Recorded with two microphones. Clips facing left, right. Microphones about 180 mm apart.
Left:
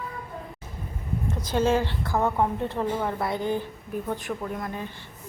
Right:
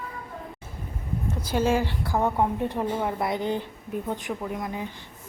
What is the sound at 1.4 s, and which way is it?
A woman's voice, 10° right (ahead or behind).